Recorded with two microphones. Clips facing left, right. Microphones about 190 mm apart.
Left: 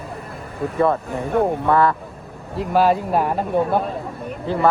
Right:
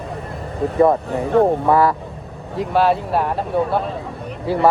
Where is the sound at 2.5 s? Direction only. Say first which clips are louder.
Even; centre (ahead or behind).